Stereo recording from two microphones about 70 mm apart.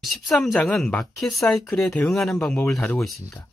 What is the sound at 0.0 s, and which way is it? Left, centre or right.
Speech, centre.